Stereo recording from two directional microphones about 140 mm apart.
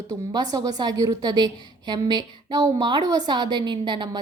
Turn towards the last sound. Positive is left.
turn(degrees=-35)  # may be behind; listen again after turning